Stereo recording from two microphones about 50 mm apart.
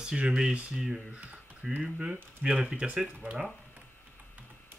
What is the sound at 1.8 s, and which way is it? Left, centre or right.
Speech, centre.